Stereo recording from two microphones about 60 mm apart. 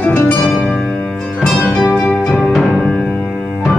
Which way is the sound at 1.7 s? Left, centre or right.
Centre.